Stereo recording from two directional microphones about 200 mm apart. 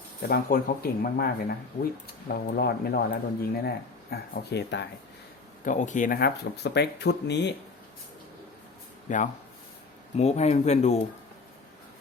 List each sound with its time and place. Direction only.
0.2 s speech: 45° left (ahead or behind)
5.6 s speech: 40° left (ahead or behind); by 7.5 s 60° left (ahead or behind)
9.0 s speech: 40° left (ahead or behind)